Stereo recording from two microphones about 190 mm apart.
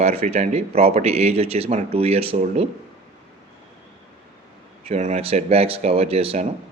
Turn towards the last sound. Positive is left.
turn(degrees=-30)  # may be behind; listen again after turning